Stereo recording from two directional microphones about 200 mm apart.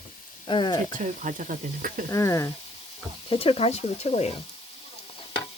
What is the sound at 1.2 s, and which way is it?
Speech, 40° right (ahead or behind).